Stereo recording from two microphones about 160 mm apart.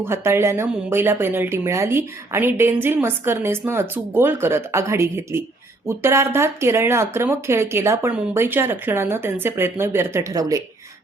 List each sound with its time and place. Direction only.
0.0 s speech: 15° right (ahead or behind)